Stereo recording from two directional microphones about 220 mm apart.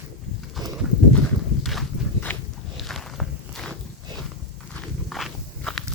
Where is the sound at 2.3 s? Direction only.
10° left (ahead or behind).